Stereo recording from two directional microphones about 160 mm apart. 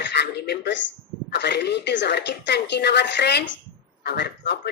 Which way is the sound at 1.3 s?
90° left.